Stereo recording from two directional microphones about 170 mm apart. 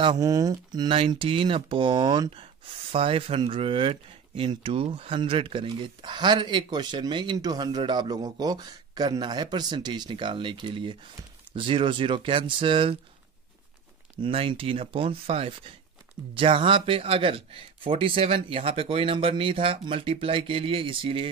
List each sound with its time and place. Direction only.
0.0 s speech: 25° right (ahead or behind)
14.2 s speech: 30° right (ahead or behind)